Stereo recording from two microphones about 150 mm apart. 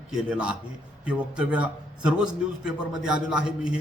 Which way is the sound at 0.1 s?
5° right (ahead or behind).